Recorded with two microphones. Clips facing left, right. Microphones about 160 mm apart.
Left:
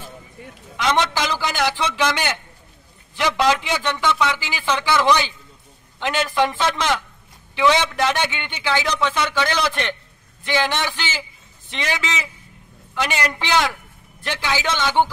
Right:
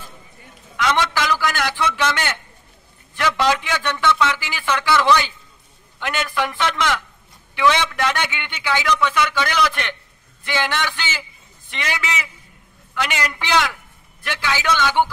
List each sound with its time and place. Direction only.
0.7 s a man's voice: 20° left (ahead or behind)
10.4 s a man's voice: 15° left (ahead or behind)
12.9 s a man's voice: 25° left (ahead or behind)